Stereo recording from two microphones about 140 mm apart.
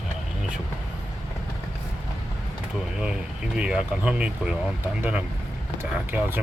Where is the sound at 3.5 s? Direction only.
10° right (ahead or behind).